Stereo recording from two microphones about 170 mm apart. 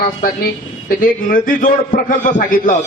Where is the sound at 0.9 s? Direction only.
50° left (ahead or behind).